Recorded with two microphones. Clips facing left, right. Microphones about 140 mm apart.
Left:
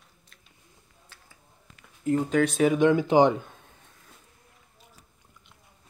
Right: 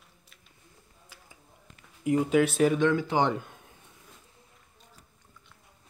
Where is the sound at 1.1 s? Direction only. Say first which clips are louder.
Right 2 dB; 10° right (ahead or behind).